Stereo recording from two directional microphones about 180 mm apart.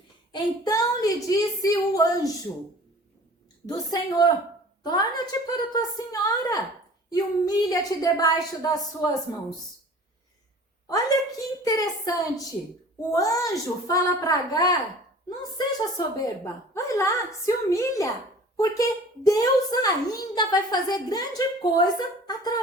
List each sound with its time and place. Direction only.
0.3 s a woman's voice: 25° left (ahead or behind)
3.7 s a woman's voice: 20° left (ahead or behind)
10.8 s a woman's voice: 20° left (ahead or behind)